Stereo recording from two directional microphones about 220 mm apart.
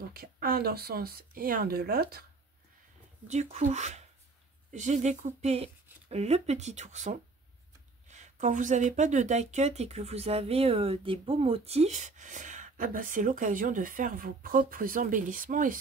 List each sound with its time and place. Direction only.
0.1 s speech: 45° right (ahead or behind)
3.3 s speech: 30° right (ahead or behind)